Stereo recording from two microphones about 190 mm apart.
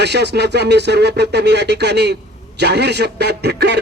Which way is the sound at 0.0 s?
60° right (ahead or behind).